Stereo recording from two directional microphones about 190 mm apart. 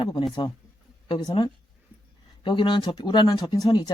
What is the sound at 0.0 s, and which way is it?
Speech, 30° left (ahead or behind).